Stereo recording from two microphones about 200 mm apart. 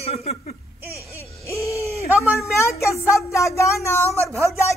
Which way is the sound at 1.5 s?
15° left (ahead or behind).